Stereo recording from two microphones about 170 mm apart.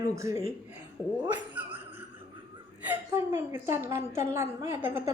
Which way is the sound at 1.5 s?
10° right (ahead or behind).